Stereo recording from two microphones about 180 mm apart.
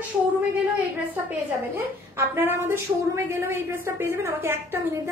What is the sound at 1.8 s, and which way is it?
A woman's voice, 10° right (ahead or behind).